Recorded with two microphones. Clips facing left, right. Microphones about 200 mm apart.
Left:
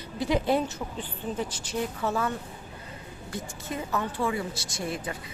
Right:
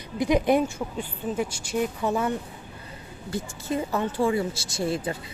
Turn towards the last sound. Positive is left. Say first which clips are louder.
# right 6 dB
turn(degrees=-30)  # may be behind; listen again after turning